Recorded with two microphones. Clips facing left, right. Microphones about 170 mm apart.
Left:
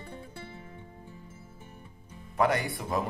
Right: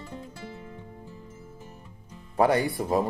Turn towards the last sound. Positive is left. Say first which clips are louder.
# right 6 dB
turn(degrees=-30)  # may be behind; listen again after turning